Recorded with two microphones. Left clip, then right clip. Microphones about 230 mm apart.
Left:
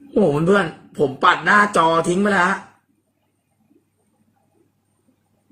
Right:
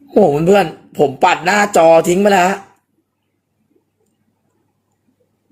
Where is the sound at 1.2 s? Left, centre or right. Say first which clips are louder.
Even; centre.